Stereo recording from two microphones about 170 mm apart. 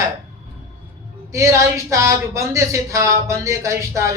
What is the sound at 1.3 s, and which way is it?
Speech, 15° right (ahead or behind).